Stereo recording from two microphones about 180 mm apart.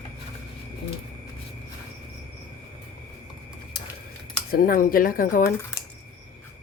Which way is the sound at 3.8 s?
60° left (ahead or behind).